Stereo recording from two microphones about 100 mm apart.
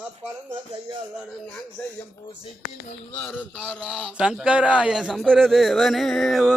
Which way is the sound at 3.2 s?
20° left (ahead or behind).